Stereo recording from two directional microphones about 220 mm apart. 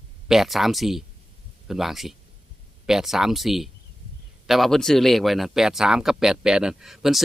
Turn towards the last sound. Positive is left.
turn(degrees=0)  # may be behind; listen again after turning